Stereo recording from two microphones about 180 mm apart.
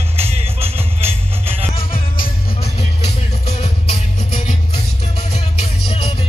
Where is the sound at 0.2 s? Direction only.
35° right (ahead or behind).